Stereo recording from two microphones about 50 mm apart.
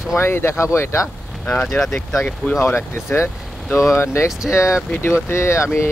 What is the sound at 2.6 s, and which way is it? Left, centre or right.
Speech, left.